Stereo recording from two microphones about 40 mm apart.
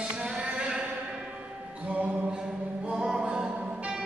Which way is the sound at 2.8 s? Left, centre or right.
Right.